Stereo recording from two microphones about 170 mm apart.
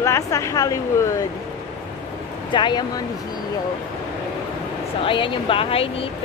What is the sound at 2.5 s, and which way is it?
Speech, 25° left (ahead or behind).